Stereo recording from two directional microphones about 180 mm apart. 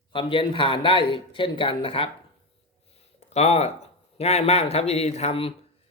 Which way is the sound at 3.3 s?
35° left (ahead or behind).